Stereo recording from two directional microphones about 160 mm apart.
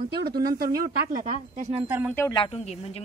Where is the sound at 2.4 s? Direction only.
35° left (ahead or behind).